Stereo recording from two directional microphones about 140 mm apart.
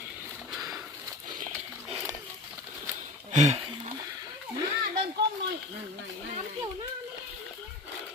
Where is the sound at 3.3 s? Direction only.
55° right (ahead or behind).